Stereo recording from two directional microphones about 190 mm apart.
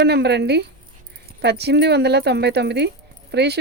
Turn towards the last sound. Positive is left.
turn(degrees=-60)  # may be behind; listen again after turning